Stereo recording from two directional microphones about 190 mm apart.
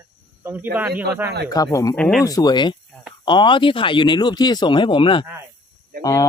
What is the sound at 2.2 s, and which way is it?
Speech, 20° left (ahead or behind).